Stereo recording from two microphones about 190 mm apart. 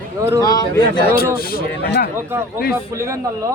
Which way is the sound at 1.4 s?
50° left (ahead or behind).